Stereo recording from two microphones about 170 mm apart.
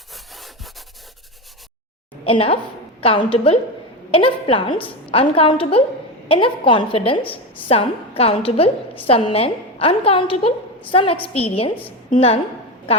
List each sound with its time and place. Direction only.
0.1 s wood: centre (ahead or behind)
2.2 s a woman's voice: 35° left (ahead or behind)